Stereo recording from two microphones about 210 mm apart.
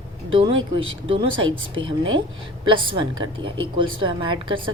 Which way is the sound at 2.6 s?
25° right (ahead or behind).